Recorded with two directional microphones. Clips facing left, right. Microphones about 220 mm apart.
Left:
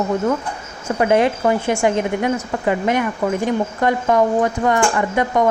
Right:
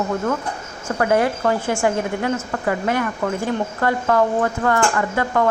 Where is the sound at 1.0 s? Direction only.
20° left (ahead or behind).